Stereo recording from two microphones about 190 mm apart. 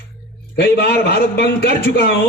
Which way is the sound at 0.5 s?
55° left (ahead or behind).